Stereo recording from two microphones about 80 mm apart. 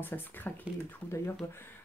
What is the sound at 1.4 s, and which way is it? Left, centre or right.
Speech, left.